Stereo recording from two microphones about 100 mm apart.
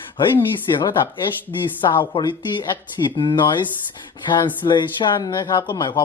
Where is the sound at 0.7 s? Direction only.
40° left (ahead or behind).